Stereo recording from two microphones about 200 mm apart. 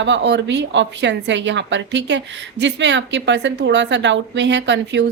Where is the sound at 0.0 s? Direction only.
65° right (ahead or behind).